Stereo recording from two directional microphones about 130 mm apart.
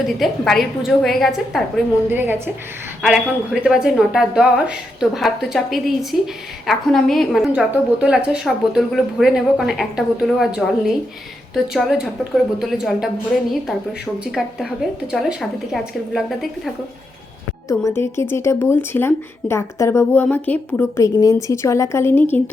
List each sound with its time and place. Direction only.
0.2 s a woman's voice: centre (ahead or behind)
2.0 s a woman's voice: 15° right (ahead or behind)
3.0 s a woman's voice: 5° right (ahead or behind)
14.3 s a woman's voice: centre (ahead or behind)
17.7 s speech: 20° left (ahead or behind)
21.0 s speech: 25° left (ahead or behind)